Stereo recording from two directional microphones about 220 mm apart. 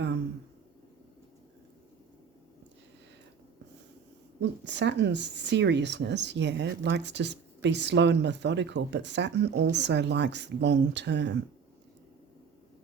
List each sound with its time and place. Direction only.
4.4 s speech: 50° right (ahead or behind)